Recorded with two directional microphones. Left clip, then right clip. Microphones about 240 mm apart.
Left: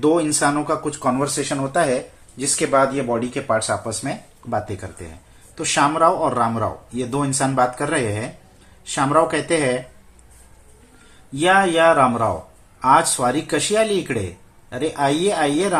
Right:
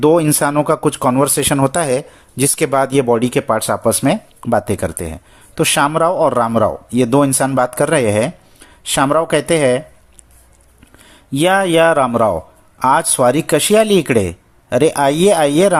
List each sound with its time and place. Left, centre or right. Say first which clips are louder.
0.0 s speech: right 5 dB; right
11.3 s speech: right 3 dB; right